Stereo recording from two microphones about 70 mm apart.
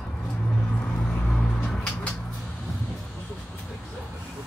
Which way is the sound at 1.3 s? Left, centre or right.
Centre.